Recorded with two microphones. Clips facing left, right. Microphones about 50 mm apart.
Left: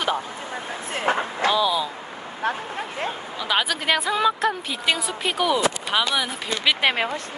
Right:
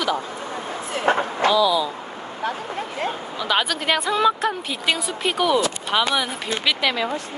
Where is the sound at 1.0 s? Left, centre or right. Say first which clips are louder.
Right 3 dB; right.